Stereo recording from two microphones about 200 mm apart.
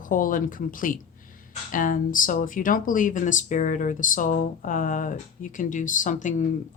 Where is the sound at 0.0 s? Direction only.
45° left (ahead or behind).